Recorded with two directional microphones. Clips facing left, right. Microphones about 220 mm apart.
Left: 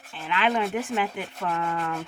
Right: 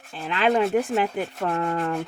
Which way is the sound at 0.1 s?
40° right (ahead or behind).